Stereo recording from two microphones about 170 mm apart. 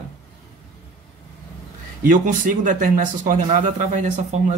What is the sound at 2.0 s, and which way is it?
Speech, 50° right (ahead or behind).